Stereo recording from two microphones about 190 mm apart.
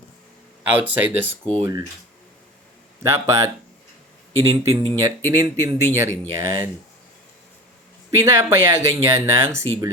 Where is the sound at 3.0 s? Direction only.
15° right (ahead or behind).